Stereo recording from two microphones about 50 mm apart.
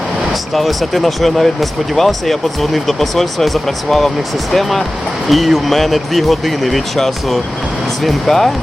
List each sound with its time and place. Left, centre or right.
0.5 s speech: centre